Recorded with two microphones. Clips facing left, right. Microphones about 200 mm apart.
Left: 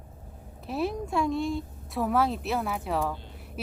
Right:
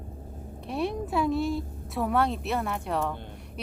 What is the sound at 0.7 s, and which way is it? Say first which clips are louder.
Speech: even; centre (ahead or behind).